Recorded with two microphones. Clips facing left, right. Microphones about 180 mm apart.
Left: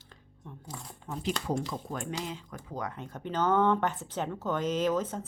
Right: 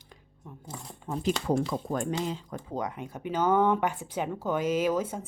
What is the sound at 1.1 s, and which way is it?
Speech, 30° right (ahead or behind).